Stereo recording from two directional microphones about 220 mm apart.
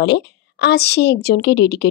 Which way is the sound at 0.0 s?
50° left (ahead or behind).